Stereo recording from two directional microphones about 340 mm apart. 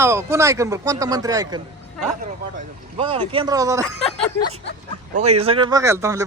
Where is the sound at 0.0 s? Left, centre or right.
Centre.